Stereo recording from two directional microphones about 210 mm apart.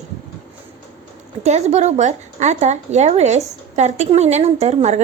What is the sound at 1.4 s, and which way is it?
Speech, 30° right (ahead or behind).